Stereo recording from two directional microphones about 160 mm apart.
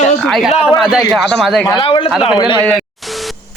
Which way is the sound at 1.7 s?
30° left (ahead or behind).